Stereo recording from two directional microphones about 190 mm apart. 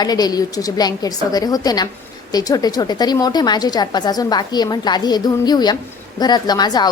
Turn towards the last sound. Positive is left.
turn(degrees=20)  # may be behind; listen again after turning